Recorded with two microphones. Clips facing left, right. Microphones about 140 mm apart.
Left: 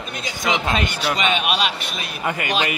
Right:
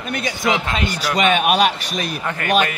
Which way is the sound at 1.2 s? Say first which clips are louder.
Right 7 dB; 45° right (ahead or behind).